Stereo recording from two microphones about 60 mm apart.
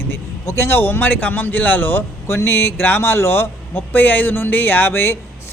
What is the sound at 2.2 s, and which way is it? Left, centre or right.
Speech, left.